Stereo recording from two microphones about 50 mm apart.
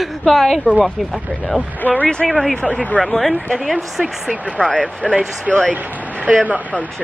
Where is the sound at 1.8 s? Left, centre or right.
Left.